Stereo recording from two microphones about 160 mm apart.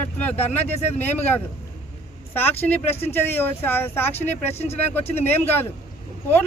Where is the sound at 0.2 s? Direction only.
10° left (ahead or behind).